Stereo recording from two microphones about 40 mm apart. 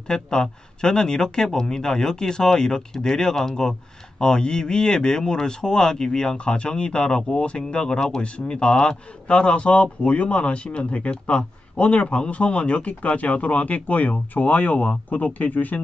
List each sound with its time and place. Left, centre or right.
0.1 s speech: centre; by 15.8 s left